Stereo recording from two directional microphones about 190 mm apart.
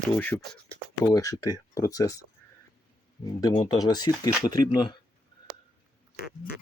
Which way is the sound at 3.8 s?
20° left (ahead or behind).